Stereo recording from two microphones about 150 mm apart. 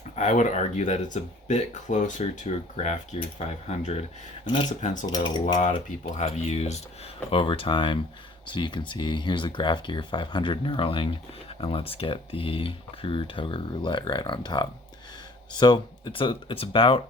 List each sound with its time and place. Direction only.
0.2 s speech: 50° left (ahead or behind)
4.4 s speech: 30° left (ahead or behind)
5.9 s speech: 45° left (ahead or behind)